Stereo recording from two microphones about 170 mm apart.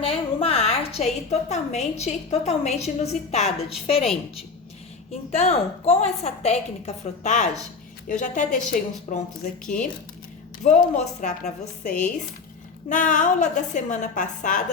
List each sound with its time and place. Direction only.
0.0 s a woman's voice: 35° left (ahead or behind)
4.0 s a woman's voice: centre (ahead or behind)
5.3 s a woman's voice: 40° left (ahead or behind)
11.9 s speech: 5° left (ahead or behind)
12.9 s a woman's voice: 50° left (ahead or behind)